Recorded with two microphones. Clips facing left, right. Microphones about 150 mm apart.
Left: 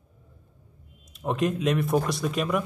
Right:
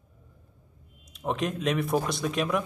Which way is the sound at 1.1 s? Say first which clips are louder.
Left 3 dB; centre (ahead or behind).